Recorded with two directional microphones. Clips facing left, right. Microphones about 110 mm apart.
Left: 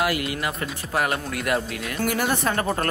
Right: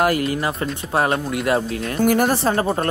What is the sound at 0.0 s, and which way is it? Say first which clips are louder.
A woman's voice: right 6 dB; 40° right (ahead or behind).